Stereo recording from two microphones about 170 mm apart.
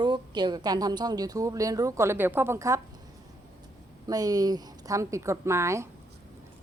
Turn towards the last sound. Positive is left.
turn(degrees=-15)  # may be behind; listen again after turning